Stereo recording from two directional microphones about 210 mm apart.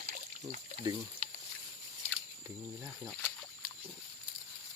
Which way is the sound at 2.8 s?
10° right (ahead or behind).